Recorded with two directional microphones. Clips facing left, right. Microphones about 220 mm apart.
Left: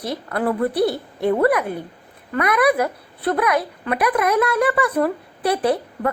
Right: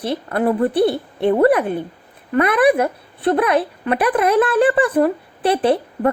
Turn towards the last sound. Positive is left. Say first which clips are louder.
# right 3 dB
turn(degrees=-30)  # may be behind; listen again after turning